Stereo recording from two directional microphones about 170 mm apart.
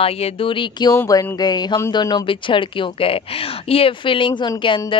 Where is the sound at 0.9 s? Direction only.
15° left (ahead or behind).